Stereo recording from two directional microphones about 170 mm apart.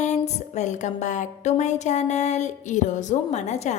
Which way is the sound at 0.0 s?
40° left (ahead or behind).